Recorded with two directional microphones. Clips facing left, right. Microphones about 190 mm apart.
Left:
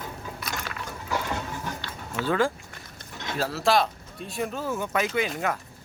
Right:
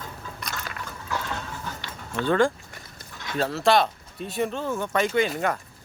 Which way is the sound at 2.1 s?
5° left (ahead or behind).